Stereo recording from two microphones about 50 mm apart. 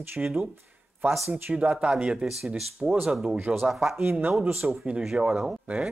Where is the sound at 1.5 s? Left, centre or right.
Centre.